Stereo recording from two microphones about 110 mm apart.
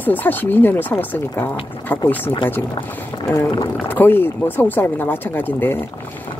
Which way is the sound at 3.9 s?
20° left (ahead or behind).